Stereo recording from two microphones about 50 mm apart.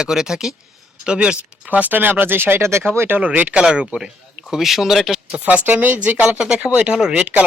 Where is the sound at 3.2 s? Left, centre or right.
Right.